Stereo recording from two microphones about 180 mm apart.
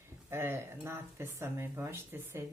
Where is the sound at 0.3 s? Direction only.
15° right (ahead or behind).